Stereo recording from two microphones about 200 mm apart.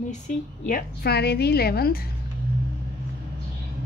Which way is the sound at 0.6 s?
50° left (ahead or behind).